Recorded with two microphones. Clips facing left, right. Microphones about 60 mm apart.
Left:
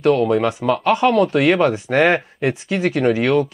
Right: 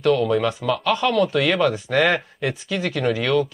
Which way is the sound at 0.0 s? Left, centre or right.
Left.